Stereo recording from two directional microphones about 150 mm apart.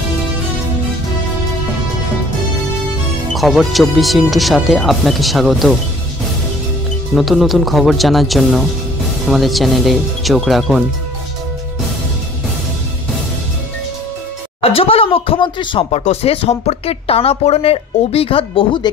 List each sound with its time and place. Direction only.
3.3 s speech: centre (ahead or behind)
7.2 s speech: centre (ahead or behind)
14.6 s speech: 40° left (ahead or behind)
16.0 s speech: 45° left (ahead or behind)